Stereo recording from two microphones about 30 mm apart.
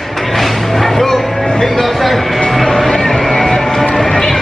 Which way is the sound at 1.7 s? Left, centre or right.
Centre.